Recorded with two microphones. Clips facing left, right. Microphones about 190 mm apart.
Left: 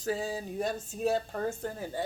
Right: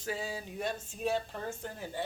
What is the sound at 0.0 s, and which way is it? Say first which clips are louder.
Speech: left 5 dB; 40° left (ahead or behind).